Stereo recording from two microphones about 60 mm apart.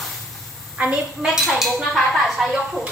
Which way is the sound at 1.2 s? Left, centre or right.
Centre.